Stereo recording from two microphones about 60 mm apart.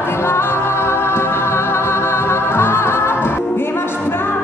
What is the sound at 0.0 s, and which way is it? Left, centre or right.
Music, left.